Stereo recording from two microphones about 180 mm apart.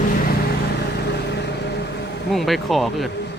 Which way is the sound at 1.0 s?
65° left (ahead or behind).